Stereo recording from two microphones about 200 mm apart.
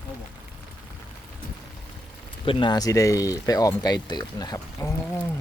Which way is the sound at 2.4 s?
25° left (ahead or behind).